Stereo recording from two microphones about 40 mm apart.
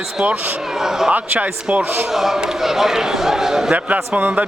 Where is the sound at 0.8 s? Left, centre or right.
Centre.